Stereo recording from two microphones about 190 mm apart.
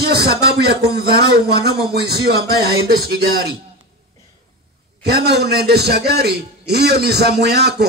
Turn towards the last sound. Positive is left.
turn(degrees=-60)  # may be behind; listen again after turning